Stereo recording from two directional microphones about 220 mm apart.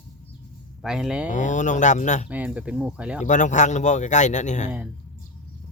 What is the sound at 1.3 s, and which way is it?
Speech, 35° left (ahead or behind).